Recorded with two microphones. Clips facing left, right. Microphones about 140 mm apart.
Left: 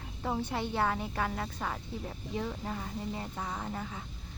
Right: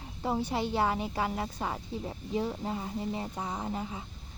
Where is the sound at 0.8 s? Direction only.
15° right (ahead or behind).